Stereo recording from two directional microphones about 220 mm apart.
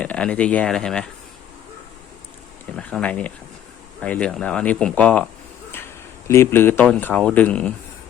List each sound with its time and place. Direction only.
0.0 s speech: 5° left (ahead or behind)
2.7 s speech: 5° left (ahead or behind)